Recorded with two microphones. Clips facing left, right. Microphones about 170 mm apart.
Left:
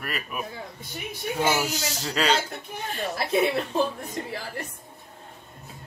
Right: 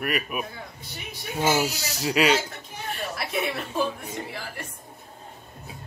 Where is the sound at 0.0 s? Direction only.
15° right (ahead or behind).